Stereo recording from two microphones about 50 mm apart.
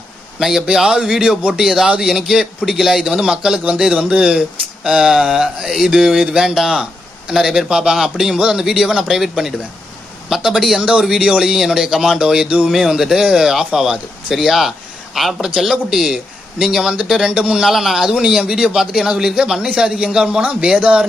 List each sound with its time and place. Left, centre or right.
0.4 s speech: centre
10.8 s speech: right; by 16.2 s centre
17.2 s speech: centre
17.7 s speech: centre; by 21.0 s right